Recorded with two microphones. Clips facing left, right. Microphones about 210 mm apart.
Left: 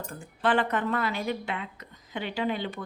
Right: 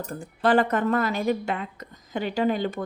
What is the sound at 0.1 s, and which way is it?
A woman's voice, 40° right (ahead or behind).